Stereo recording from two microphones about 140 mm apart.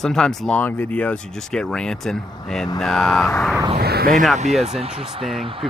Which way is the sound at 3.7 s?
90° right.